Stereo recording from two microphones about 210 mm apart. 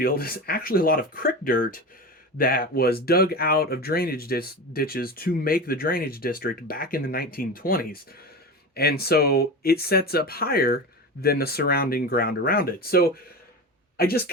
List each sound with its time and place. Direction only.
0.0 s speech: 45° left (ahead or behind)